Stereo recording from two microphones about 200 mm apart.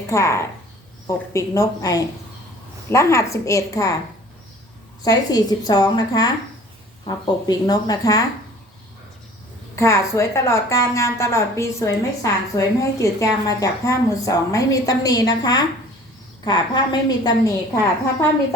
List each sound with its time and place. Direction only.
0.1 s a woman's voice: 15° left (ahead or behind)
5.0 s a woman's voice: 20° left (ahead or behind)
9.7 s a woman's voice: 15° left (ahead or behind)